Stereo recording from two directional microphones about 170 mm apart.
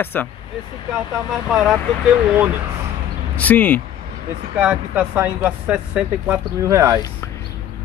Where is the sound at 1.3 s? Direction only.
5° right (ahead or behind).